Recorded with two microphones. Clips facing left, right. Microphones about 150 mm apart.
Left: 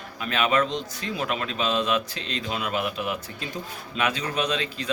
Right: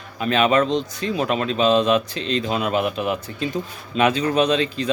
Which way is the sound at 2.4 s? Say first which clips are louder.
Right 4 dB; 35° right (ahead or behind).